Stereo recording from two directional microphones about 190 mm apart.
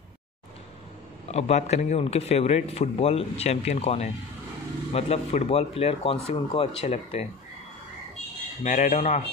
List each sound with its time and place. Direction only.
1.3 s a man's voice: 35° left (ahead or behind)
8.6 s a man's voice: 40° left (ahead or behind)